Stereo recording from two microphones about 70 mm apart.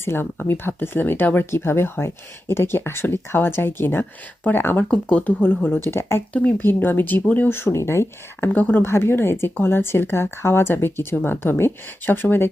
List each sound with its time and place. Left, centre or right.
0.0 s speech: left
4.9 s speech: left
6.3 s speech: left
8.5 s speech: left
8.9 s speech: left